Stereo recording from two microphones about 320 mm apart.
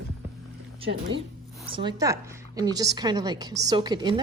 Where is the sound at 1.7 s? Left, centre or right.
Centre.